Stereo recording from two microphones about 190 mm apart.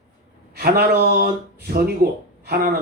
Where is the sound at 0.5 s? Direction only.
50° right (ahead or behind).